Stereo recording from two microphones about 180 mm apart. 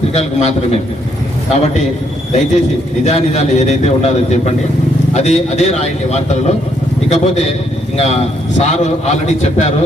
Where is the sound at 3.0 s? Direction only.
35° left (ahead or behind).